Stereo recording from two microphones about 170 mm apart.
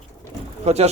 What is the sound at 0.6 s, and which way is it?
Speech, 40° right (ahead or behind).